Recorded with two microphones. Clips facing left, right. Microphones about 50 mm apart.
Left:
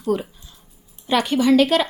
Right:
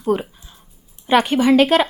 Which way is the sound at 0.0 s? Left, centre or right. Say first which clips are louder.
Right 2 dB; right.